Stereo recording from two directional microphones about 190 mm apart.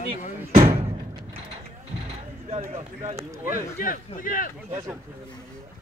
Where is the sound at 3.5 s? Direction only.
45° left (ahead or behind).